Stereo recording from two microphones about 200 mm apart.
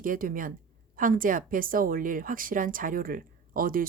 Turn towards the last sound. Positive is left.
turn(degrees=-45)  # may be behind; listen again after turning